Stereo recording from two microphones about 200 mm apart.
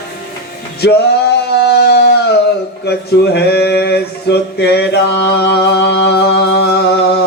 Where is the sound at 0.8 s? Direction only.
55° left (ahead or behind).